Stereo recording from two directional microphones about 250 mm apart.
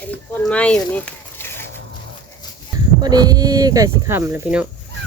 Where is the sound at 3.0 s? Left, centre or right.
Centre.